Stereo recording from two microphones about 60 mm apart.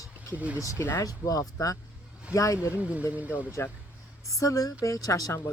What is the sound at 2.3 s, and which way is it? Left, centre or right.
Speech, left.